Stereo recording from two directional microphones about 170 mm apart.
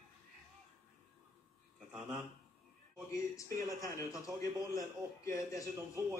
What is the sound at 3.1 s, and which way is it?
A man's voice, 20° left (ahead or behind).